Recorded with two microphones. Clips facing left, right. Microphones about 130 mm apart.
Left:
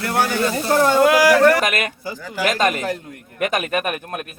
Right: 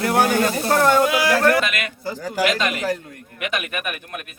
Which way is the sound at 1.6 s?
45° left (ahead or behind).